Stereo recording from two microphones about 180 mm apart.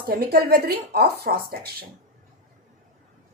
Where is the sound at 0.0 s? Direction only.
55° right (ahead or behind).